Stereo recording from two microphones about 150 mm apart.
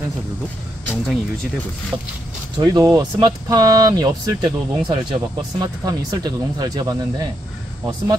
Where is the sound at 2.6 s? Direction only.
25° right (ahead or behind).